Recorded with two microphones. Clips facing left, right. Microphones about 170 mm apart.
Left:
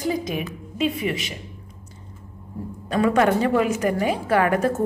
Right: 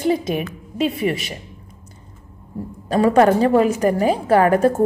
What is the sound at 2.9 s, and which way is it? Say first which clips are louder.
A woman's voice: right 5 dB; 35° right (ahead or behind).